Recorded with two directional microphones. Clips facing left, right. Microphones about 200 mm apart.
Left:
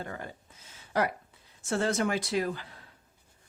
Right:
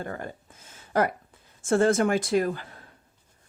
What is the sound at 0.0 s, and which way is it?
Speech, 50° right (ahead or behind).